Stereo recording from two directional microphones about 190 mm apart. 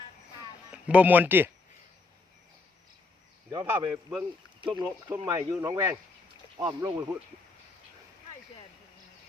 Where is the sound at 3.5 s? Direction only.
20° right (ahead or behind).